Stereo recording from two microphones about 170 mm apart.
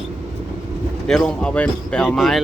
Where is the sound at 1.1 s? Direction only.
5° left (ahead or behind).